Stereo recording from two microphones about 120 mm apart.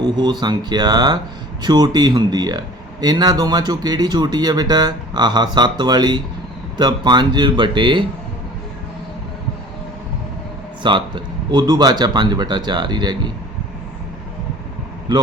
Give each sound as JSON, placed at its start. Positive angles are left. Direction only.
{"t": 0.0, "sound": "speech", "side_deg": -35}
{"t": 10.8, "sound": "speech", "side_deg": -40}
{"t": 15.1, "sound": "a man's voice", "side_deg": -40}